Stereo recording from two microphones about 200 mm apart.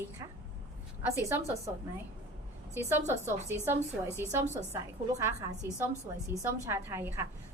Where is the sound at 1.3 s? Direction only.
10° right (ahead or behind).